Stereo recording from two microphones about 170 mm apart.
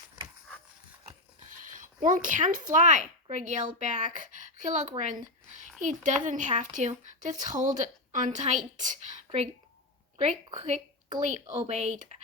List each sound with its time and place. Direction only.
1.8 s a woman's voice: 50° right (ahead or behind); by 11.2 s 30° right (ahead or behind)
11.7 s speech: 40° right (ahead or behind)